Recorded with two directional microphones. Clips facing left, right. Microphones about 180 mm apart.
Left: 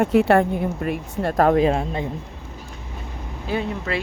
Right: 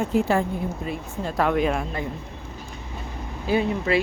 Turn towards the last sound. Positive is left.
turn(degrees=-5)  # may be behind; listen again after turning